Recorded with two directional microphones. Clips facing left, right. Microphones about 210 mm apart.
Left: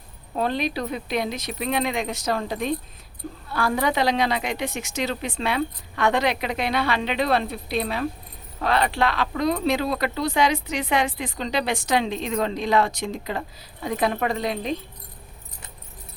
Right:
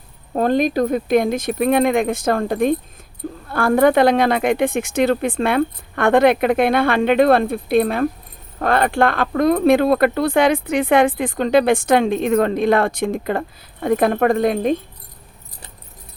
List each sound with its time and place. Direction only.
0.3 s speech: 45° right (ahead or behind)